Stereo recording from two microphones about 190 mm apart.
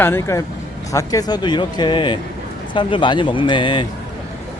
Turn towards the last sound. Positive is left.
turn(degrees=25)  # may be behind; listen again after turning